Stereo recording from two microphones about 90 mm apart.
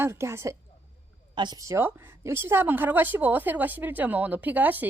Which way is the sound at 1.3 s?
55° right (ahead or behind).